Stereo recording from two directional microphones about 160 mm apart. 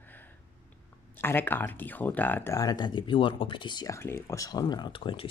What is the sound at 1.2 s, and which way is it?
Speech, 15° left (ahead or behind).